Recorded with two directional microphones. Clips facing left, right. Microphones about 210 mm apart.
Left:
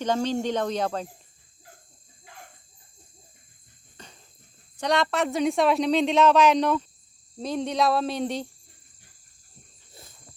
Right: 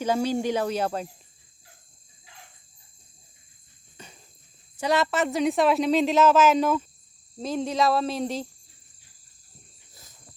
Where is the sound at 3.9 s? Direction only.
10° right (ahead or behind).